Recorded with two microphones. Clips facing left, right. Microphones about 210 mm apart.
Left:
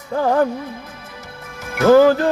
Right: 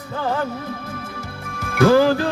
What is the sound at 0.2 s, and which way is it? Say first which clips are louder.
Music: left 7 dB; 50° left (ahead or behind).